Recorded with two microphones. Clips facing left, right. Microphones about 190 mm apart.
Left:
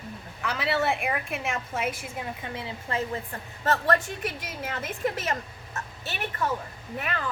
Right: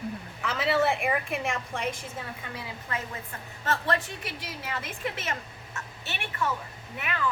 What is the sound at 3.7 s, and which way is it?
A woman's voice, 45° left (ahead or behind).